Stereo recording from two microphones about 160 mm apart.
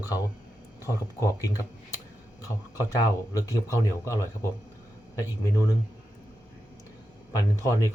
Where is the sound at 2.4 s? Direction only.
20° left (ahead or behind).